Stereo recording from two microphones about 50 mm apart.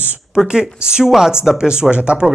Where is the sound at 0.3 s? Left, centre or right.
Centre.